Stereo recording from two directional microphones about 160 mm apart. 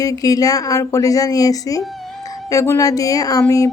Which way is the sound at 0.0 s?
20° left (ahead or behind).